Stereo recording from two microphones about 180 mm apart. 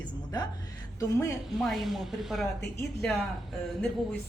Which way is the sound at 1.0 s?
15° left (ahead or behind).